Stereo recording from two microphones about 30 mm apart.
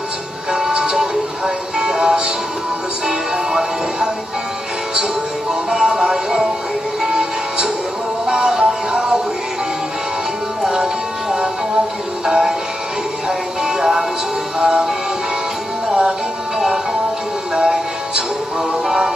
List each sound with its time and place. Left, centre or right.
0.9 s music: right
5.5 s music: centre
10.6 s music: centre
13.7 s music: centre
15.9 s music: right